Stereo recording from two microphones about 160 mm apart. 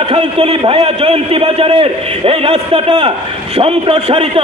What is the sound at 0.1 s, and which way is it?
A man's voice, 35° right (ahead or behind).